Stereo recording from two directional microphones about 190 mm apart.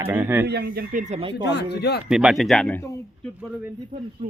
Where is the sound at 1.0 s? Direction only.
30° right (ahead or behind).